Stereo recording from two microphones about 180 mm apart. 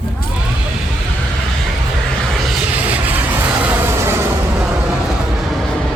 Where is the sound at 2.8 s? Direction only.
10° right (ahead or behind).